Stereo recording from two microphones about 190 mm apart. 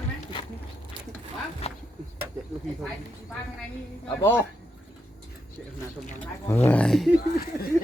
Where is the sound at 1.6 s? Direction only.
30° left (ahead or behind).